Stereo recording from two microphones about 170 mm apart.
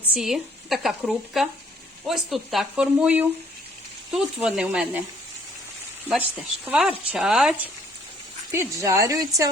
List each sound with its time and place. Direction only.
0.1 s a woman's voice: centre (ahead or behind)
6.1 s speech: 10° right (ahead or behind)
8.5 s speech: 15° right (ahead or behind)